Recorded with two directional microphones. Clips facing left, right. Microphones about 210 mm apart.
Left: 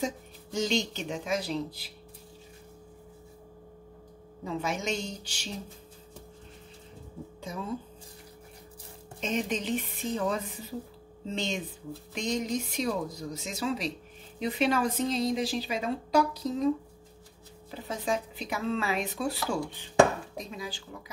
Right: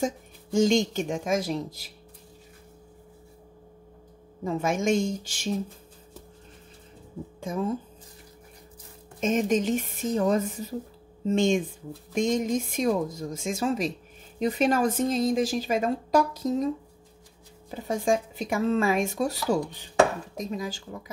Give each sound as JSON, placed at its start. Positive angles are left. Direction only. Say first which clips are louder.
{"t": 0.0, "sound": "speech", "louder": "right 4 dB", "side_deg": -45}
{"t": 4.5, "sound": "speech", "louder": "right 7 dB", "side_deg": -50}
{"t": 7.3, "sound": "speech", "louder": "right 9 dB", "side_deg": -50}
{"t": 9.2, "sound": "speech", "louder": "right 7 dB", "side_deg": -45}
{"t": 17.6, "sound": "speech", "louder": "right 6 dB", "side_deg": -45}